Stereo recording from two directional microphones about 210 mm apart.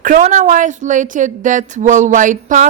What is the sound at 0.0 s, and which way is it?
A woman's voice, 40° right (ahead or behind).